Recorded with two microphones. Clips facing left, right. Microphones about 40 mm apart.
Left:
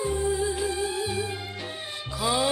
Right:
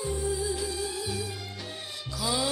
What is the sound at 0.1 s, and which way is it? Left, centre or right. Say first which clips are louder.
Music: left 4 dB; left.